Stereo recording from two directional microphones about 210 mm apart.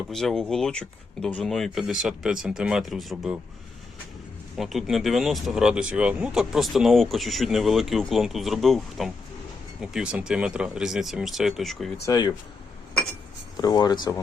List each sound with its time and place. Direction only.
0.1 s speech: centre (ahead or behind)
4.5 s speech: centre (ahead or behind)
12.0 s speech: 20° left (ahead or behind)
13.6 s speech: 20° left (ahead or behind)